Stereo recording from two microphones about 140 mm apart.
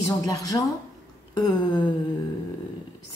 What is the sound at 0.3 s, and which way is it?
Speech, 25° left (ahead or behind).